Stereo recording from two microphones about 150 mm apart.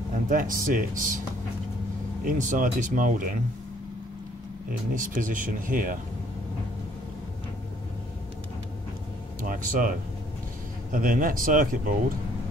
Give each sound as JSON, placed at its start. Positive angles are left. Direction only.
{"t": 0.3, "sound": "speech", "side_deg": -65}
{"t": 2.2, "sound": "speech", "side_deg": -60}
{"t": 4.9, "sound": "speech", "side_deg": -60}
{"t": 9.4, "sound": "speech", "side_deg": -65}